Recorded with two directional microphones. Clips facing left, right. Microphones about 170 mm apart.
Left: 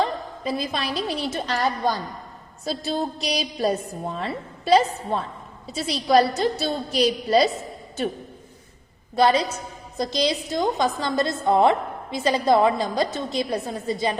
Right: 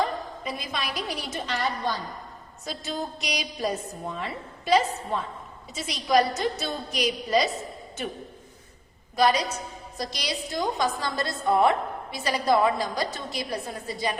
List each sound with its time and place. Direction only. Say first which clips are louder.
0.0 s a woman's voice: left 3 dB; 30° left (ahead or behind)
2.6 s a woman's voice: left 6 dB; 35° left (ahead or behind)
9.1 s a woman's voice: left 3 dB; 30° left (ahead or behind)